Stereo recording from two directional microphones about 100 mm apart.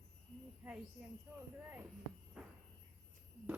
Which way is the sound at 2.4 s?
10° right (ahead or behind).